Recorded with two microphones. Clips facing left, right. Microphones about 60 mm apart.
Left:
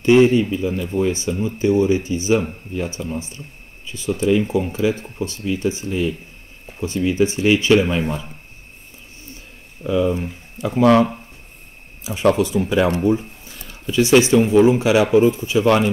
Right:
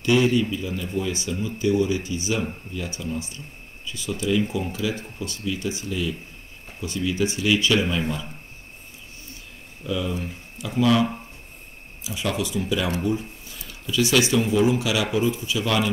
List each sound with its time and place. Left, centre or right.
0.0 s speech: left
9.8 s speech: left